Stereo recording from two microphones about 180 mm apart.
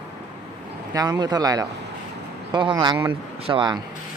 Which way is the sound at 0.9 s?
20° right (ahead or behind).